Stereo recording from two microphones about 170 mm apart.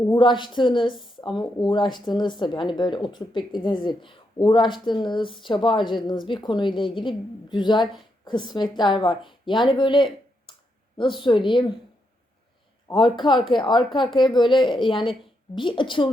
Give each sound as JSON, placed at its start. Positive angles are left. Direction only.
{"t": 0.1, "sound": "a woman's voice", "side_deg": 30}
{"t": 12.9, "sound": "speech", "side_deg": 30}